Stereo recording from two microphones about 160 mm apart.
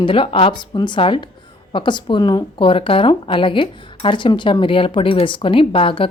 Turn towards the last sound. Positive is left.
turn(degrees=35)  # may be behind; listen again after turning